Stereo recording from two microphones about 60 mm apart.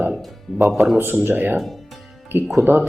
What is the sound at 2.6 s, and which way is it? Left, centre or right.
Speech, right.